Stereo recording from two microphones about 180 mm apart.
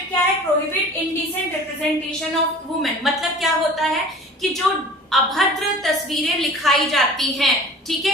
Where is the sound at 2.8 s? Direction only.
Centre (ahead or behind).